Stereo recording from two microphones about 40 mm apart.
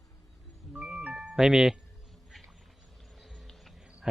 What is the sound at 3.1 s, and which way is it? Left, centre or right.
Music, centre.